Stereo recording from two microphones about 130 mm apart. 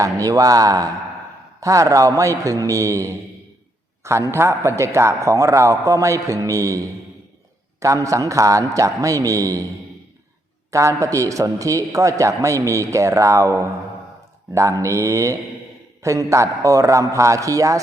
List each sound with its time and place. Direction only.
0.0 s a man's voice: 25° right (ahead or behind)
10.7 s a man's voice: 25° right (ahead or behind)